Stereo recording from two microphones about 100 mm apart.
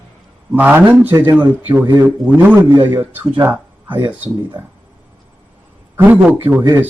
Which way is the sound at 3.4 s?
15° right (ahead or behind).